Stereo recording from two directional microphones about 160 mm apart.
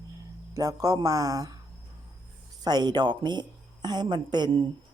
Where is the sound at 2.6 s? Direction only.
25° right (ahead or behind).